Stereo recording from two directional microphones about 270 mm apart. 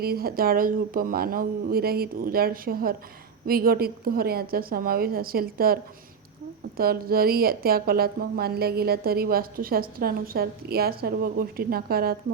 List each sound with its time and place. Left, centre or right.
0.0 s a woman's voice: right